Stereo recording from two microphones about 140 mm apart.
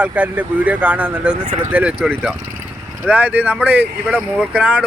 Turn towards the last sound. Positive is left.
turn(degrees=-10)  # may be behind; listen again after turning